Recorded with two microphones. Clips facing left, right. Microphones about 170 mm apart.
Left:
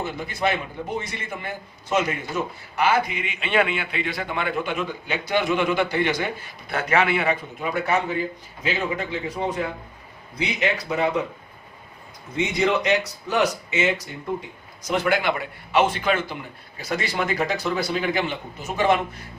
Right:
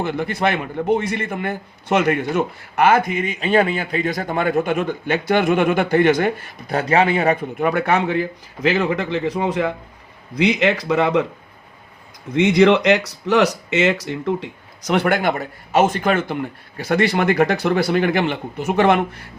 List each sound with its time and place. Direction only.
0.0 s a man's voice: 65° right (ahead or behind)
6.7 s a man's voice: 35° right (ahead or behind)
7.6 s a man's voice: 60° right (ahead or behind); by 11.2 s 80° right
12.3 s speech: 90° right; by 19.0 s 60° right (ahead or behind)